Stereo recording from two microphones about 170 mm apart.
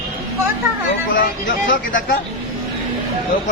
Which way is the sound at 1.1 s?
90° left.